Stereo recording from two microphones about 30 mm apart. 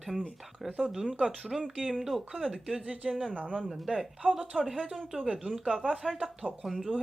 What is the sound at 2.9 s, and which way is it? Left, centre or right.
Speech, right.